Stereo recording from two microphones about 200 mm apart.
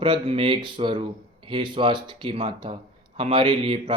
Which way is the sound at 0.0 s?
25° right (ahead or behind).